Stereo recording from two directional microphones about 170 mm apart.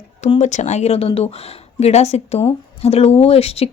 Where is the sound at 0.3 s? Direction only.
45° left (ahead or behind).